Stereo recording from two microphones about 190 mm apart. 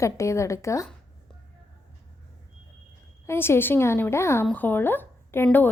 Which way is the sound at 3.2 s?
10° left (ahead or behind).